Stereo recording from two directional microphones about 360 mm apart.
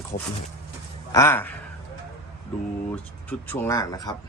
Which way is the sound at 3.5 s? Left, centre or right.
Centre.